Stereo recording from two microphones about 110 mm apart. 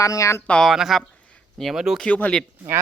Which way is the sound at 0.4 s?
10° left (ahead or behind).